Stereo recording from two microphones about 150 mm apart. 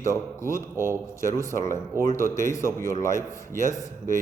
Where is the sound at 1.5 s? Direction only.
60° right (ahead or behind).